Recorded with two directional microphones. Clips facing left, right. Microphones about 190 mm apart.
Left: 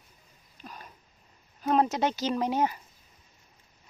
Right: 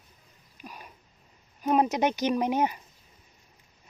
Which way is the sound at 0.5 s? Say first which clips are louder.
Right 1 dB; 10° right (ahead or behind).